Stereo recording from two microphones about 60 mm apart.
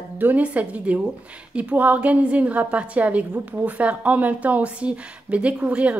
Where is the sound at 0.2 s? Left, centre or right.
Right.